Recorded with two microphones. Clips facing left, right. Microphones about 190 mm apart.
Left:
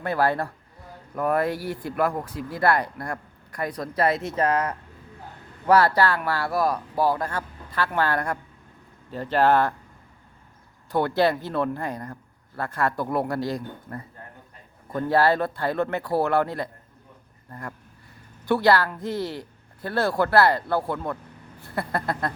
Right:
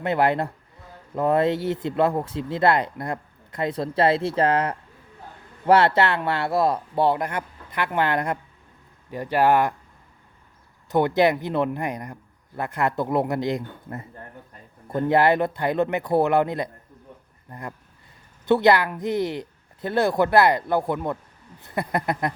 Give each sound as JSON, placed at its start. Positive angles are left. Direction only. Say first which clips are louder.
{"t": 0.0, "sound": "speech", "louder": "right 2 dB", "side_deg": -20}
{"t": 10.9, "sound": "speech", "louder": "right 2 dB", "side_deg": -20}